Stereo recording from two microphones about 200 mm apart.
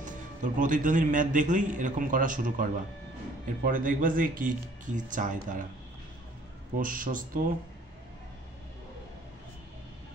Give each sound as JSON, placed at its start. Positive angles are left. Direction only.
{"t": 0.0, "sound": "a man's voice", "side_deg": -40}
{"t": 6.8, "sound": "speech", "side_deg": -45}